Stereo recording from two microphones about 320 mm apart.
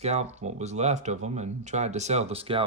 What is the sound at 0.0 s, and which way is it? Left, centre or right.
Speech, centre.